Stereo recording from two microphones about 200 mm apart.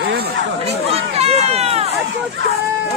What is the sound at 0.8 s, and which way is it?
Speech, 30° right (ahead or behind).